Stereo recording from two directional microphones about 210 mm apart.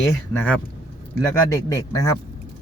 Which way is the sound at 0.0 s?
10° left (ahead or behind).